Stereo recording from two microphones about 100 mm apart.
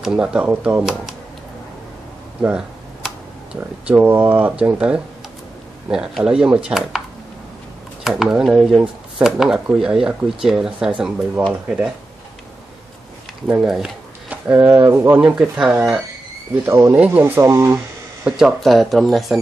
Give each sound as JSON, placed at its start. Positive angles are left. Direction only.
{"t": 0.0, "sound": "speech", "side_deg": -10}
{"t": 3.8, "sound": "speech", "side_deg": -20}
{"t": 8.0, "sound": "speech", "side_deg": -5}
{"t": 13.5, "sound": "speech", "side_deg": -5}
{"t": 14.3, "sound": "speech", "side_deg": -15}
{"t": 15.2, "sound": "speech", "side_deg": -10}
{"t": 17.2, "sound": "speech", "side_deg": -30}
{"t": 18.3, "sound": "speech", "side_deg": -5}